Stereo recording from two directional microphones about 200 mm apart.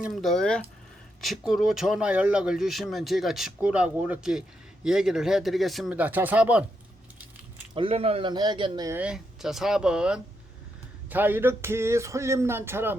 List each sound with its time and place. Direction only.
0.0 s speech: centre (ahead or behind)
7.7 s speech: 25° right (ahead or behind)
9.0 s speech: 5° right (ahead or behind)
11.1 s a sound: 10° right (ahead or behind)